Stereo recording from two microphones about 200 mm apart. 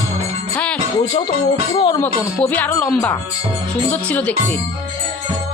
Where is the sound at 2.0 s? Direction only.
10° left (ahead or behind).